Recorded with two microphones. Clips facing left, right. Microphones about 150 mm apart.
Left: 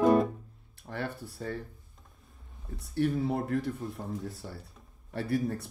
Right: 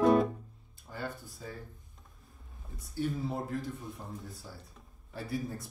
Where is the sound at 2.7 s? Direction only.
Centre (ahead or behind).